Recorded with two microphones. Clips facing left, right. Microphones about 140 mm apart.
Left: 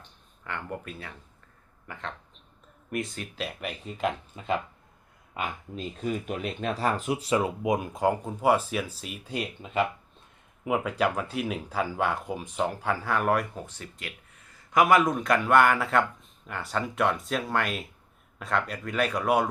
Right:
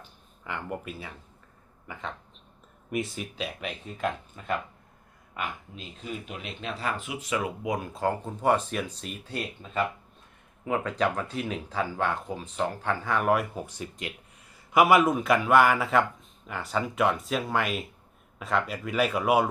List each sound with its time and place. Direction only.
0.0 s a sound: 5° right (ahead or behind)
1.9 s speech: centre (ahead or behind); by 5.5 s 25° left (ahead or behind)
5.7 s speech: 50° left (ahead or behind); by 19.5 s 5° right (ahead or behind)